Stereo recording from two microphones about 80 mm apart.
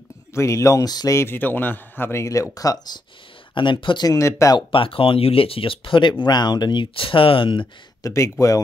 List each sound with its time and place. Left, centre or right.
0.3 s speech: left
1.1 s a man's voice: left
2.5 s speech: left
3.5 s speech: left
4.1 s speech: left
4.6 s speech: left
8.0 s speech: left